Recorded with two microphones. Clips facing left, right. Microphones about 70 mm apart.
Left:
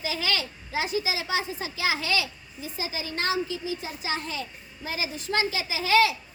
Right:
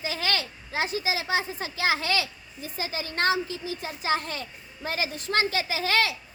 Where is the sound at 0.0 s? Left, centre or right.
Right.